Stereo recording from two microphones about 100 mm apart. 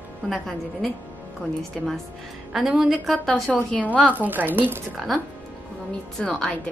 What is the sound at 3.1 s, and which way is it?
Speech, 10° left (ahead or behind).